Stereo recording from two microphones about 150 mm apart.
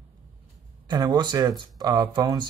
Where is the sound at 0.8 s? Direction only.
30° right (ahead or behind).